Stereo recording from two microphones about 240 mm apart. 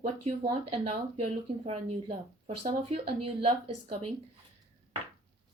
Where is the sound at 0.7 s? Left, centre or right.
Right.